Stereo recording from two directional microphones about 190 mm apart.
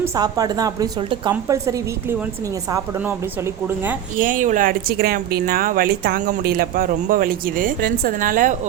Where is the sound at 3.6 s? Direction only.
10° right (ahead or behind).